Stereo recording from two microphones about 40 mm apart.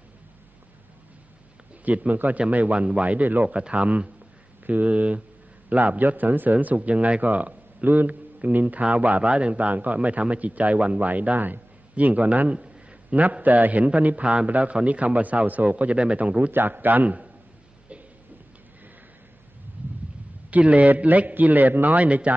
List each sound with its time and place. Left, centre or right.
1.9 s a man's voice: right
5.9 s speech: right
7.8 s a man's voice: right
11.3 s speech: right
11.9 s a man's voice: right
14.2 s a man's voice: right
16.5 s speech: right
20.5 s a man's voice: right